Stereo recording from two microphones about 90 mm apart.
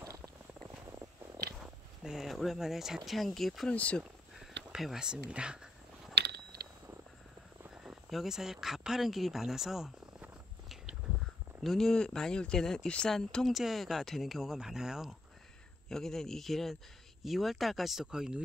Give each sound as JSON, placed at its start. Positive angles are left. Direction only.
{"t": 0.0, "sound": "walk", "side_deg": -40}
{"t": 2.0, "sound": "speech", "side_deg": -5}
{"t": 3.7, "sound": "speech", "side_deg": 15}
{"t": 4.4, "sound": "whispering", "side_deg": -5}
{"t": 7.7, "sound": "speech", "side_deg": -10}
{"t": 11.6, "sound": "speech", "side_deg": 5}